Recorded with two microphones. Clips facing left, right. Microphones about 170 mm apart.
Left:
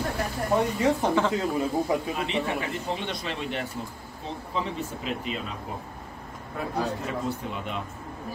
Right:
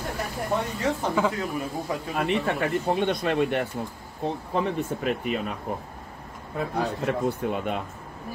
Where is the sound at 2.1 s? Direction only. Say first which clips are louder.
Right 3 dB; 55° right (ahead or behind).